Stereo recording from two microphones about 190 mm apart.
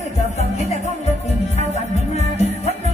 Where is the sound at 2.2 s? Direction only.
35° left (ahead or behind).